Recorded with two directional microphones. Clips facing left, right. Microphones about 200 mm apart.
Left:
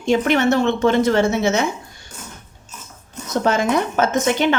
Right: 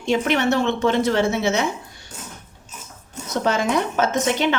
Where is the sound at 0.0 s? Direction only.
50° left (ahead or behind).